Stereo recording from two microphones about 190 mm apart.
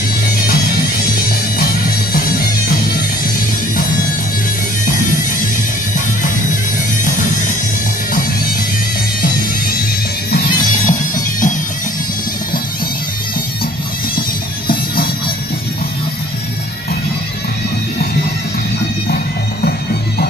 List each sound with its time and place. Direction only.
1.6 s music: 50° left (ahead or behind)
7.1 s music: 40° left (ahead or behind)
9.2 s music: 50° left (ahead or behind)